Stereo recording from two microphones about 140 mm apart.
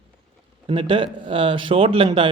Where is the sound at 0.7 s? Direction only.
35° right (ahead or behind).